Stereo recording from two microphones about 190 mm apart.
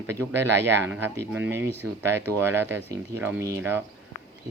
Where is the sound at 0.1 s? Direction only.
10° right (ahead or behind).